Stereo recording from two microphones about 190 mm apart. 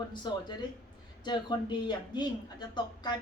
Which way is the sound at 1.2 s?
25° left (ahead or behind).